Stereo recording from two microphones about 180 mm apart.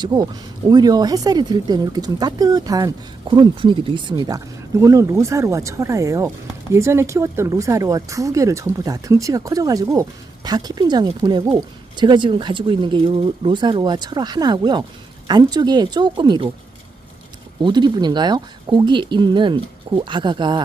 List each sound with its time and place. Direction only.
0.0 s speech: 20° right (ahead or behind)
17.6 s speech: 25° right (ahead or behind)